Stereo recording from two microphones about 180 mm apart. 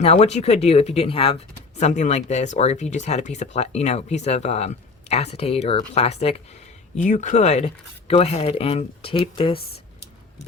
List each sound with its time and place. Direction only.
0.0 s speech: 35° left (ahead or behind)